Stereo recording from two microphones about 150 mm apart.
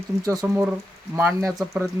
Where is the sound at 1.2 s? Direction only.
15° right (ahead or behind).